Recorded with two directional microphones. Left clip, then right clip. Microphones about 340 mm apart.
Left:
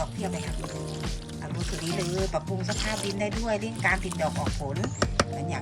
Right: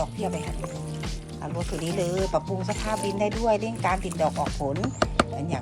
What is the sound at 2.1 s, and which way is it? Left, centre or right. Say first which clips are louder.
Speech: right 4 dB; centre.